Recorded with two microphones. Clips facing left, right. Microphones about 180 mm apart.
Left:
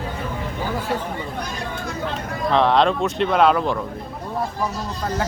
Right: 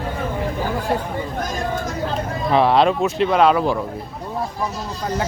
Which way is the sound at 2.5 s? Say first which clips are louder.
Right 2 dB; 5° right (ahead or behind).